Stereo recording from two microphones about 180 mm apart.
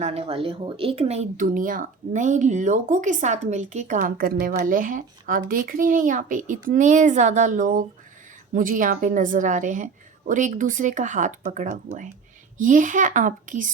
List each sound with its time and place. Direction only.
0.0 s speech: 35° right (ahead or behind)